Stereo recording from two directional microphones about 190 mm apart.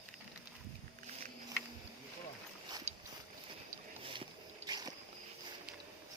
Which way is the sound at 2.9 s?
35° right (ahead or behind).